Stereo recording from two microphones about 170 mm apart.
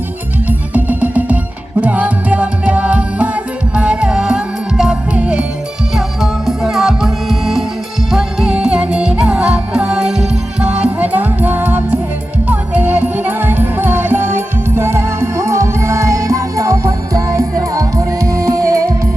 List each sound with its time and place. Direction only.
0.7 s music: 10° right (ahead or behind)